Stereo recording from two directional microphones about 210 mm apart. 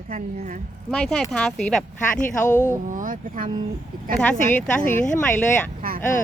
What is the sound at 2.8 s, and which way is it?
Speech, 40° right (ahead or behind).